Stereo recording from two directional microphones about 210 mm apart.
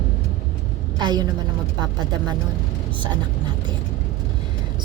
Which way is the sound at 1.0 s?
20° right (ahead or behind).